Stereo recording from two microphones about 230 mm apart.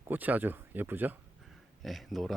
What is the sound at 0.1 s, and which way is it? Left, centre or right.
A man's voice, centre.